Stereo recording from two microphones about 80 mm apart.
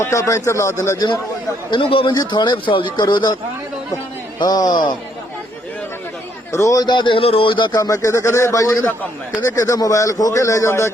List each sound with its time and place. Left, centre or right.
0.0 s speech: left
1.7 s a man's voice: left
2.3 s speech: left
4.4 s a man's voice: left
6.5 s speech: left
6.8 s a man's voice: left
7.8 s speech: left